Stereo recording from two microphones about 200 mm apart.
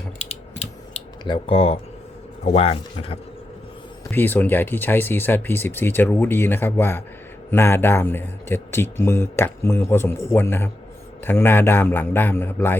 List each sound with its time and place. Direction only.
0.6 s computer keyboard: 25° left (ahead or behind)
2.4 s speech: 30° left (ahead or behind)
4.1 s speech: 10° left (ahead or behind)